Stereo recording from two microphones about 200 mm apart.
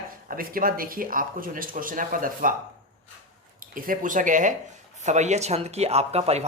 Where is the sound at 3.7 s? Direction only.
45° right (ahead or behind).